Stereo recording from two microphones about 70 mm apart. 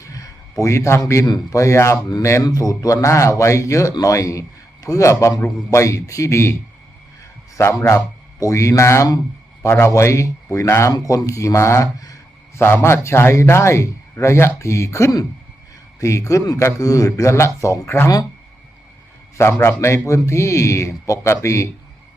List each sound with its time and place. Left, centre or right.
0.0 s a sound: left
1.2 s a man's voice: left
2.4 s a man's voice: left
9.9 s a man's voice: left
11.9 s speech: left
12.5 s a man's voice: left
19.4 s a man's voice: left